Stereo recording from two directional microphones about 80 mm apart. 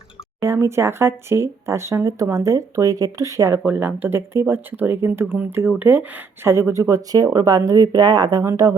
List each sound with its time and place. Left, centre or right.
0.4 s speech: right
3.7 s speech: right